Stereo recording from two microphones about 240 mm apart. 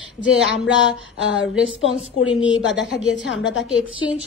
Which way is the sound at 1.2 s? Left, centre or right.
Left.